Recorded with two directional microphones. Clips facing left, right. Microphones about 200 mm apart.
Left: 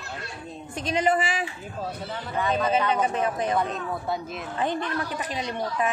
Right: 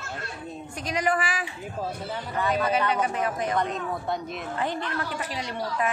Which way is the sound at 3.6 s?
5° left (ahead or behind).